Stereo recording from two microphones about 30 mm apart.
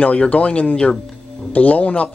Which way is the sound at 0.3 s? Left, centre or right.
Left.